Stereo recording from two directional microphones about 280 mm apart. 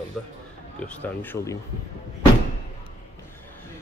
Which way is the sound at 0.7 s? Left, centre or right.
Centre.